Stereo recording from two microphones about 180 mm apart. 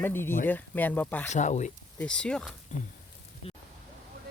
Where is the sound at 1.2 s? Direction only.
40° left (ahead or behind).